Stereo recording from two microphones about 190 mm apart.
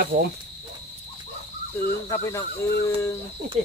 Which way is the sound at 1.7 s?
15° left (ahead or behind).